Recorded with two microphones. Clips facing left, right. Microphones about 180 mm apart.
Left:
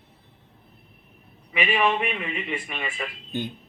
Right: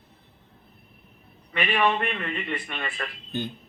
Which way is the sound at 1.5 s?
5° left (ahead or behind).